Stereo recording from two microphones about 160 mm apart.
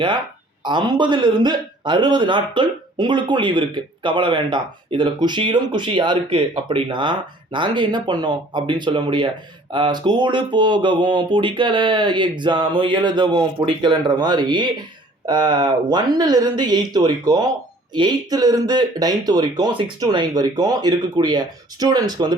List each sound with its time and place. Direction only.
0.6 s a man's voice: 30° right (ahead or behind)